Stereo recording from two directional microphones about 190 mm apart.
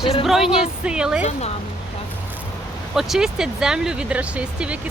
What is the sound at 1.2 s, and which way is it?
Speech, 35° left (ahead or behind).